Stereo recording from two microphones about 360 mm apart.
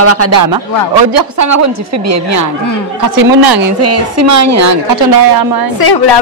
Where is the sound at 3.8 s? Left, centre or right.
Right.